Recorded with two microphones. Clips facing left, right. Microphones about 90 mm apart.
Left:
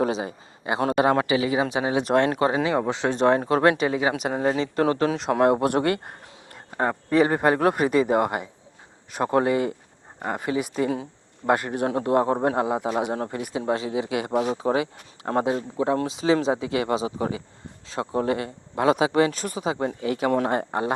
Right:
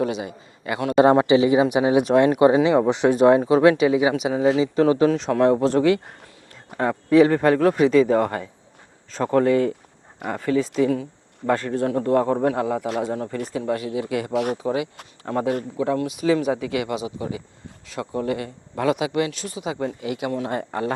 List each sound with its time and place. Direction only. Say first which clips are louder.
0.0 s a man's voice: even; 35° left (ahead or behind)
0.9 s speech: right 8 dB; 25° right (ahead or behind)
2.0 s speech: right 4 dB; 5° right (ahead or behind); by 5.6 s 10° left (ahead or behind)
5.6 s speech: right 4 dB; 55° left (ahead or behind)
6.8 s speech: right 5 dB; centre (ahead or behind); by 14.0 s 25° left (ahead or behind)
14.0 s speech: right 1 dB; 90° left
14.7 s speech: left 1 dB; 50° left (ahead or behind)
15.8 s speech: even; 30° left (ahead or behind)
20.5 s speech: left 1 dB; 30° left (ahead or behind)